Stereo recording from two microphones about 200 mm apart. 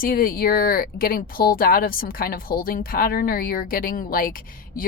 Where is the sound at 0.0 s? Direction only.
45° left (ahead or behind).